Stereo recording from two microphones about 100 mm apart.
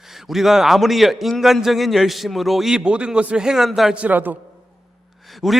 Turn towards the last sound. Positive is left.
turn(degrees=0)  # may be behind; listen again after turning